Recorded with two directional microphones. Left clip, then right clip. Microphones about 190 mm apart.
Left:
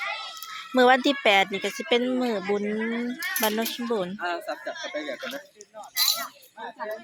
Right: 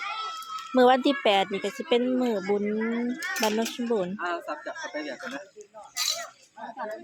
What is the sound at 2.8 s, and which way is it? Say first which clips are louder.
Speech: even; 55° right (ahead or behind).